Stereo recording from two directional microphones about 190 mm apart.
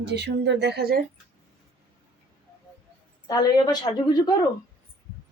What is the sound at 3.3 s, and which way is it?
A woman's voice, 20° left (ahead or behind).